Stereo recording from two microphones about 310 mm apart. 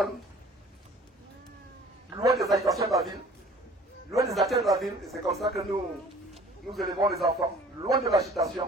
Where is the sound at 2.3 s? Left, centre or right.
Centre.